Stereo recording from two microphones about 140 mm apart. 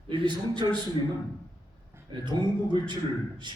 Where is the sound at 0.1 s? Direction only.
35° right (ahead or behind).